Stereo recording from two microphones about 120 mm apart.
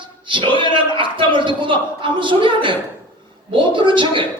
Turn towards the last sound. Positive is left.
turn(degrees=-45)  # may be behind; listen again after turning